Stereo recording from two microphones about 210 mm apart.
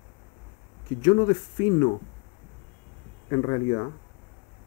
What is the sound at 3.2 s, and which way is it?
Speech, 20° left (ahead or behind).